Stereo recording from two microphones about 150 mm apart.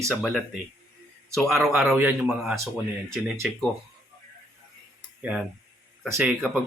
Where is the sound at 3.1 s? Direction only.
5° left (ahead or behind).